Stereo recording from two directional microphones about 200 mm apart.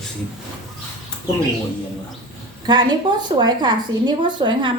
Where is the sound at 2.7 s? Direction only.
20° right (ahead or behind).